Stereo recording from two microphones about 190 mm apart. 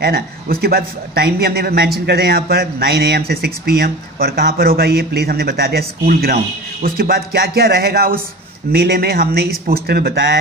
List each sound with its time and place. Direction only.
0.0 s a man's voice: 55° right (ahead or behind)